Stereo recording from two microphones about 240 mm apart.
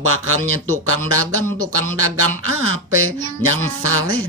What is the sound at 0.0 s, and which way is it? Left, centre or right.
Speech, right.